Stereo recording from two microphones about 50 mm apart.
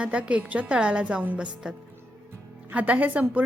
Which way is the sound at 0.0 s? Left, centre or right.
Right.